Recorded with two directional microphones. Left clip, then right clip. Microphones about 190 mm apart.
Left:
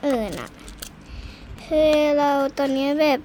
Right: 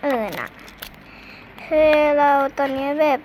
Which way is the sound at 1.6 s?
50° left (ahead or behind).